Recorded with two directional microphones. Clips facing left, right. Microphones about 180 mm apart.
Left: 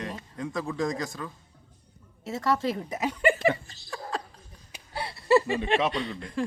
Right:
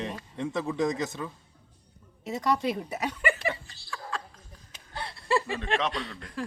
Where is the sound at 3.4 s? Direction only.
40° left (ahead or behind).